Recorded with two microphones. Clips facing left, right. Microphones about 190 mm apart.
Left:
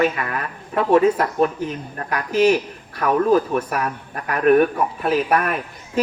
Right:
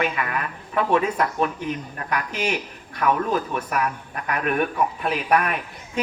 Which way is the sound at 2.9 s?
40° left (ahead or behind).